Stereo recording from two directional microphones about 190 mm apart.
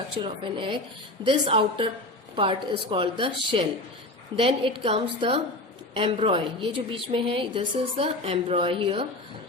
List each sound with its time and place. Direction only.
0.2 s a woman's voice: 25° right (ahead or behind)